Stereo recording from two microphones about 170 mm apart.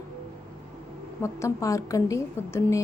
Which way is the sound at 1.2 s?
15° left (ahead or behind).